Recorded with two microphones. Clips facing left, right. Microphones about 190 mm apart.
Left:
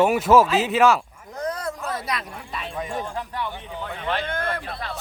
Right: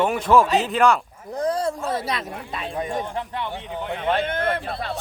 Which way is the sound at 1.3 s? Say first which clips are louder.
Right 5 dB; 30° right (ahead or behind).